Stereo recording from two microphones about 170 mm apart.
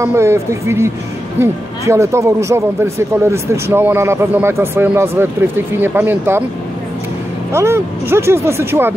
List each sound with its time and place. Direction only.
0.0 s speech: 15° right (ahead or behind)
7.5 s speech: 15° right (ahead or behind)